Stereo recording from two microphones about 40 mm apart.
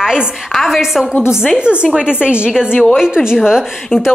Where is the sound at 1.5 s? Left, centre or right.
Right.